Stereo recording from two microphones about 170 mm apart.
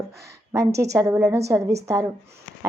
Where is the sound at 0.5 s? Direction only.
15° right (ahead or behind).